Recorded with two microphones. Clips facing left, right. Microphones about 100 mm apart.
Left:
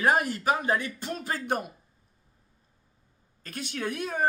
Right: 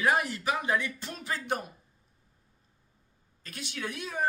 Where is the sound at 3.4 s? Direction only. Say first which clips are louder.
Left 5 dB; 45° left (ahead or behind).